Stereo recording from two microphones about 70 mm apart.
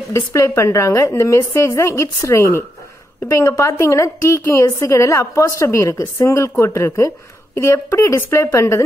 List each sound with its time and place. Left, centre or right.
0.1 s a woman's voice: left